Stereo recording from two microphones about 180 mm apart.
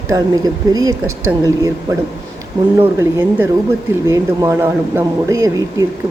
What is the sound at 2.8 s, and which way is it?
Speech, 10° right (ahead or behind).